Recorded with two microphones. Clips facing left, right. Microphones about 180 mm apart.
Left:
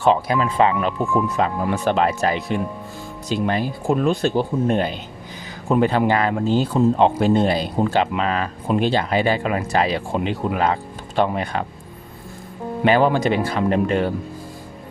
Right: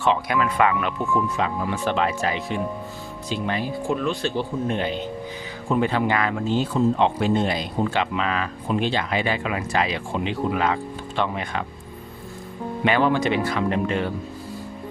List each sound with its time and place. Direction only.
0.0 s speech: 35° left (ahead or behind)
1.4 s speech: 45° left (ahead or behind)
10.2 s speech: 50° left (ahead or behind)
11.2 s speech: 40° left (ahead or behind)
12.8 s speech: 40° left (ahead or behind)